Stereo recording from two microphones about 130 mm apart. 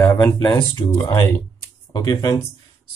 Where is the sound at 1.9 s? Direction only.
30° left (ahead or behind).